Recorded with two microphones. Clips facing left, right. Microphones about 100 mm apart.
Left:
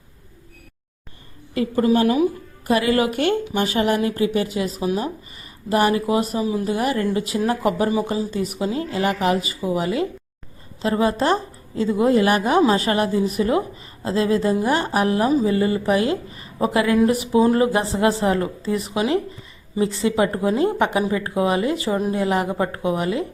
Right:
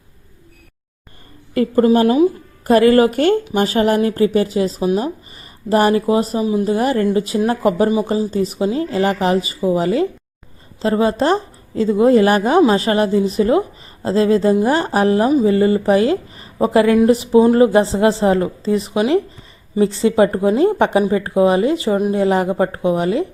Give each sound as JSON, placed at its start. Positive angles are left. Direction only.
{"t": 1.8, "sound": "speech", "side_deg": -35}
{"t": 2.6, "sound": "speech", "side_deg": -45}
{"t": 5.4, "sound": "speech", "side_deg": -35}
{"t": 6.7, "sound": "speech", "side_deg": -35}